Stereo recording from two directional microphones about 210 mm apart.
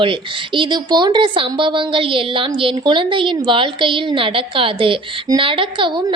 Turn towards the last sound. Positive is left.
turn(degrees=-25)  # may be behind; listen again after turning